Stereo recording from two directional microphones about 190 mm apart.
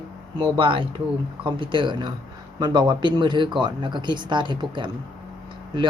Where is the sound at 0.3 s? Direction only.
25° right (ahead or behind).